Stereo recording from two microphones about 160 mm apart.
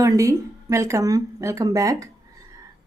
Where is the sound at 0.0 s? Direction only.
20° right (ahead or behind).